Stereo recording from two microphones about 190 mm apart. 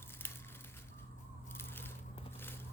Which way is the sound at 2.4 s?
10° left (ahead or behind).